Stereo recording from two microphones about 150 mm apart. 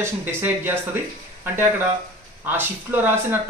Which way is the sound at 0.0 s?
15° right (ahead or behind).